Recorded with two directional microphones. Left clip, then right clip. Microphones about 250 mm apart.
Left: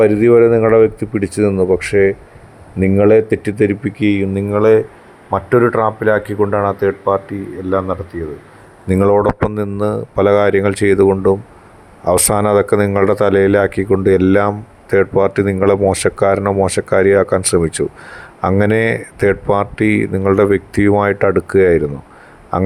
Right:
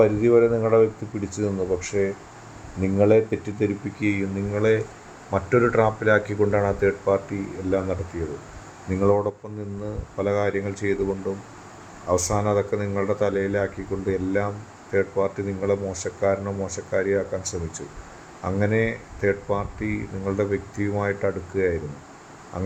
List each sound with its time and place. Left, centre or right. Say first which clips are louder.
0.0 s speech: left 8 dB; left
5.3 s speech: left 8 dB; centre
8.9 s speech: left 9 dB; left